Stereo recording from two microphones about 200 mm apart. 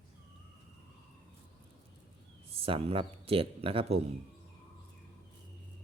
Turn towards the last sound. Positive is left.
turn(degrees=-30)  # may be behind; listen again after turning